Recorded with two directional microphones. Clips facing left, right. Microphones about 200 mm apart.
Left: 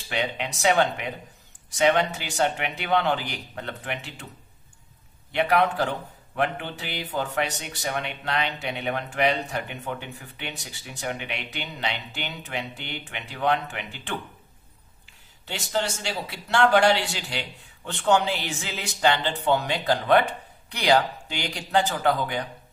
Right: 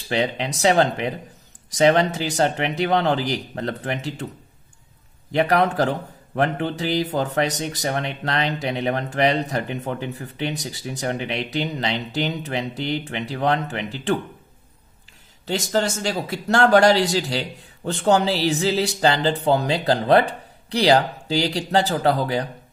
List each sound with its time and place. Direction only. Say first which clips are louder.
0.1 s a man's voice: right 6 dB; 35° right (ahead or behind)
5.3 s a man's voice: right 3 dB; 40° right (ahead or behind)
15.4 s a man's voice: right 6 dB; 40° right (ahead or behind)